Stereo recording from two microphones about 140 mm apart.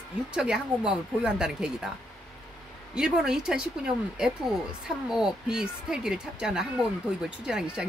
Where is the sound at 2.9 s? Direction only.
5° right (ahead or behind).